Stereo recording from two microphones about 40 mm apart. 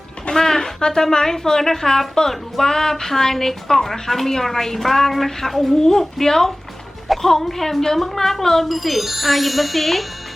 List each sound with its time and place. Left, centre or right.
0.3 s a woman's voice: centre